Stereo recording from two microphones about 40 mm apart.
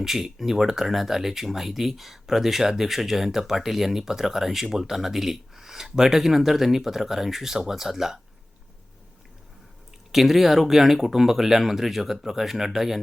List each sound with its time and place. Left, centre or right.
0.0 s speech: centre
10.1 s speech: centre